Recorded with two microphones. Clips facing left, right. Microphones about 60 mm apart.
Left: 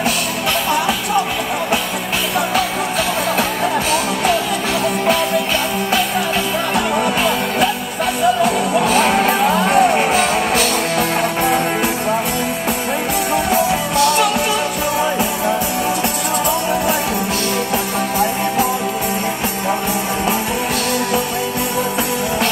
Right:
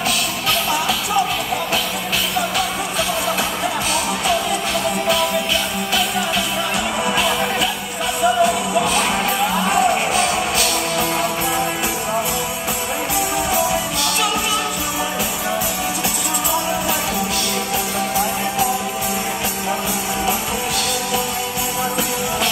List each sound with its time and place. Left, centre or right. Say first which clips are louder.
8.9 s music: left 5 dB; left